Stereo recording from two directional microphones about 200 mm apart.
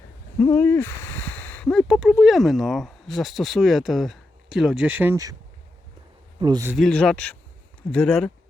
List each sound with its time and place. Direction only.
0.3 s speech: 10° left (ahead or behind); by 5.4 s 15° right (ahead or behind)
6.4 s speech: 20° right (ahead or behind)
6.7 s speech: centre (ahead or behind)